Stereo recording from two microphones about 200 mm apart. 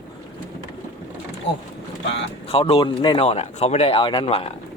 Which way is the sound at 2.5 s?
30° left (ahead or behind).